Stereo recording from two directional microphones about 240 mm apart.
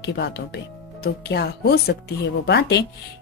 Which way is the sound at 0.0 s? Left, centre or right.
Left.